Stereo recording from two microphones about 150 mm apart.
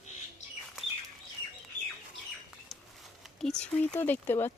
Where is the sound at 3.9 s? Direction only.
15° left (ahead or behind).